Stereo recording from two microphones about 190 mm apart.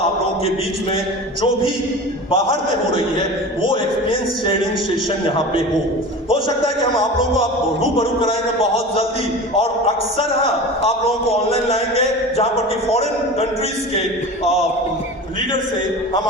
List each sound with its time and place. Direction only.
2.3 s a man's voice: 25° left (ahead or behind)
11.7 s mantra: 30° left (ahead or behind)